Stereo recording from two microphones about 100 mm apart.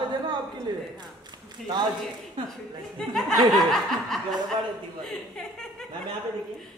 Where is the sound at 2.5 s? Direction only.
5° left (ahead or behind).